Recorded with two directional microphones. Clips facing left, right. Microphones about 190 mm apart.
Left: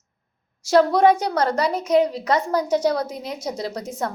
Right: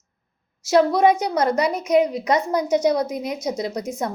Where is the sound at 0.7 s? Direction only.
10° right (ahead or behind).